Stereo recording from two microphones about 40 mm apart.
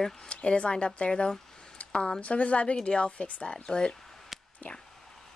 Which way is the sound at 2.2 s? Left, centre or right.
Left.